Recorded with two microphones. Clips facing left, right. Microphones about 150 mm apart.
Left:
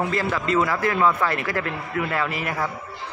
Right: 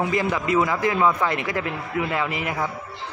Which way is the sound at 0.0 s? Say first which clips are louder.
Right 1 dB; 15° right (ahead or behind).